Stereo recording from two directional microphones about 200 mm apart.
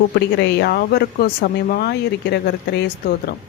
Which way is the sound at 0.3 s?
55° left (ahead or behind).